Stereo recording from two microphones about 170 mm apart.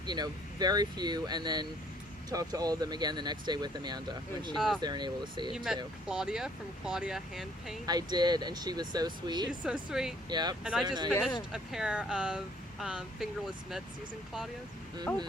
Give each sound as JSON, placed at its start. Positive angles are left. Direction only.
{"t": 0.0, "sound": "speech", "side_deg": -25}
{"t": 4.5, "sound": "speech", "side_deg": 0}
{"t": 4.8, "sound": "speech", "side_deg": -25}
{"t": 5.5, "sound": "speech", "side_deg": 0}
{"t": 7.9, "sound": "speech", "side_deg": -25}
{"t": 9.5, "sound": "speech", "side_deg": -5}
{"t": 10.2, "sound": "speech", "side_deg": -25}
{"t": 10.6, "sound": "speech", "side_deg": -5}
{"t": 10.8, "sound": "speech", "side_deg": -25}
{"t": 11.1, "sound": "speech", "side_deg": 15}
{"t": 11.5, "sound": "speech", "side_deg": -5}
{"t": 15.1, "sound": "speech", "side_deg": 5}